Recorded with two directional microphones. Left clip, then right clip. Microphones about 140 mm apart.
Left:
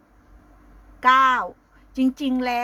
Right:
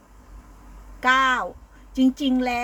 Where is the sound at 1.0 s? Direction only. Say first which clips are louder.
Left 3 dB; 15° left (ahead or behind).